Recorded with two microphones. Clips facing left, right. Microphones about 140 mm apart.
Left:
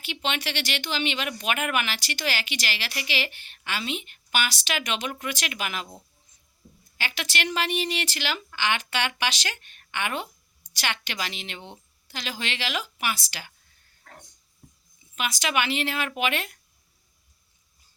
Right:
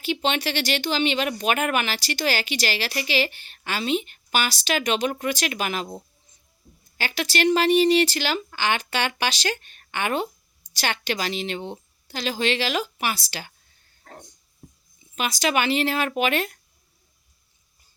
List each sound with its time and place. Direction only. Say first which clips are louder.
0.0 s speech: right 6 dB; 35° right (ahead or behind)
7.0 s speech: right 8 dB; 40° right (ahead or behind)
14.0 s a sound: right 5 dB; 35° right (ahead or behind)
15.1 s speech: right 4 dB; 35° right (ahead or behind)